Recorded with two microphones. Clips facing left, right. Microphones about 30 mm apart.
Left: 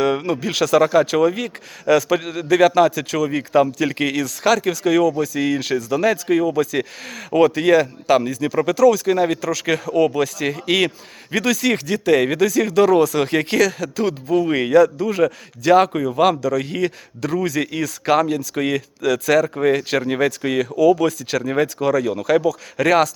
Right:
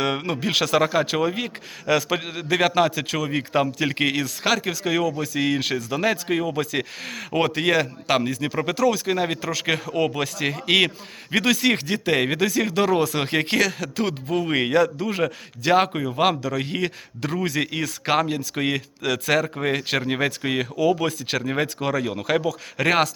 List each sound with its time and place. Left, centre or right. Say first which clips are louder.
0.0 s speech: left 5 dB; right
0.9 s speech: left 6 dB; centre
4.2 s speech: left 5 dB; centre
5.4 s a man's voice: left 3 dB; right
8.6 s a man's voice: left 7 dB; right
14.5 s a man's voice: left 5 dB; right; by 16.3 s centre
16.4 s a man's voice: left 5 dB; right
20.1 s speech: left 4 dB; centre